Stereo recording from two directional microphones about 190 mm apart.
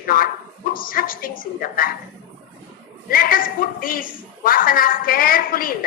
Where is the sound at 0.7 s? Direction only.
50° left (ahead or behind).